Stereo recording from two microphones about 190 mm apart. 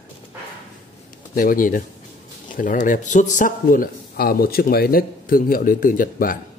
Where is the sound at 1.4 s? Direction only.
45° left (ahead or behind).